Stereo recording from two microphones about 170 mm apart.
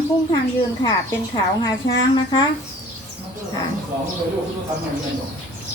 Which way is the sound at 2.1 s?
30° left (ahead or behind).